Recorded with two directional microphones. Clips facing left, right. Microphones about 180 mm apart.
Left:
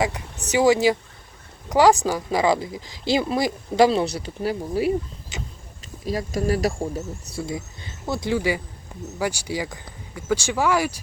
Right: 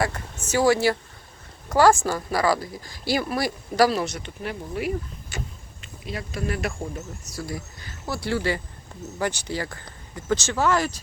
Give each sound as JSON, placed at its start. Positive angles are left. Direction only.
{"t": 0.0, "sound": "speech", "side_deg": 15}
{"t": 5.3, "sound": "vehicle", "side_deg": 20}
{"t": 6.1, "sound": "speech", "side_deg": 40}
{"t": 7.3, "sound": "speech", "side_deg": 20}